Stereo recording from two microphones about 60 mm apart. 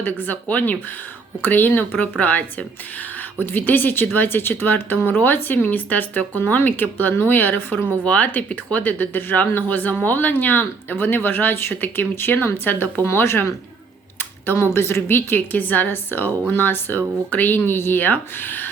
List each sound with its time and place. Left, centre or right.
0.0 s speech: left
13.1 s speech: left